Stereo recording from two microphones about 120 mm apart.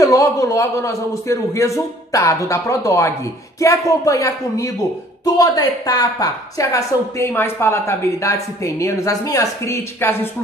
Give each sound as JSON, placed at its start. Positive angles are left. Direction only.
{"t": 0.0, "sound": "a man's voice", "side_deg": 30}